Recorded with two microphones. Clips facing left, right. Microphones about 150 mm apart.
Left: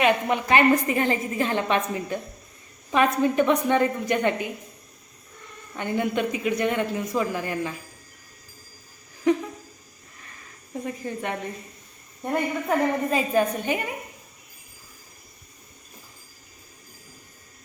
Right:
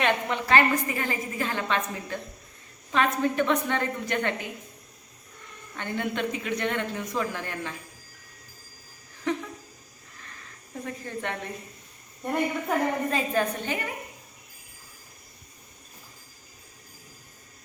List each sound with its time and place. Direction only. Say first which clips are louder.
0.0 s a woman's voice: left 4 dB; 10° left (ahead or behind)
5.7 s a woman's voice: left 5 dB; 15° left (ahead or behind)
9.3 s a sound: left 7 dB; 15° left (ahead or behind)
10.8 s a woman's voice: left 3 dB; 10° left (ahead or behind)
12.6 s a woman's voice: left 3 dB; 10° left (ahead or behind)